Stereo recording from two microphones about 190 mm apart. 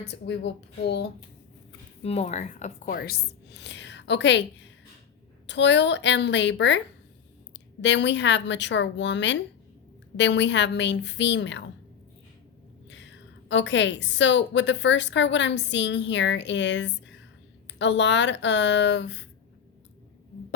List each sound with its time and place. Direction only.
0.0 s speech: 65° left (ahead or behind)
2.0 s speech: 35° left (ahead or behind)
2.9 s a woman's voice: 55° left (ahead or behind)
5.5 s a woman's voice: 70° left (ahead or behind)
12.9 s a woman's voice: 70° left (ahead or behind)